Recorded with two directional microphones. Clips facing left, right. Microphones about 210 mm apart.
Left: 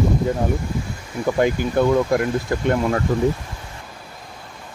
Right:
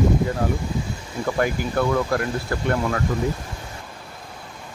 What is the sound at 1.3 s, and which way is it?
Speech, 20° left (ahead or behind).